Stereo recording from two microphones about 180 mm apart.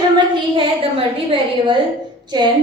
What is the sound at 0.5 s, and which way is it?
A woman's voice, 30° right (ahead or behind).